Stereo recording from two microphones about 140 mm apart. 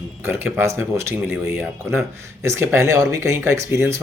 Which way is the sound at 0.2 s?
15° right (ahead or behind).